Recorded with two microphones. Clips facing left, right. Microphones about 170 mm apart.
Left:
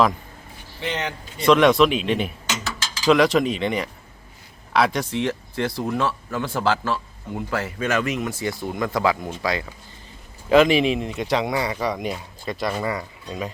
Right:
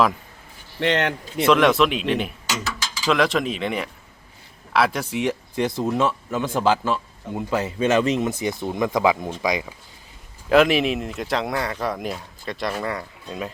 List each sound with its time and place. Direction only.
0.8 s speech: 75° right (ahead or behind)
1.5 s speech: centre (ahead or behind)
5.2 s speech: 15° right (ahead or behind)
10.5 s speech: centre (ahead or behind)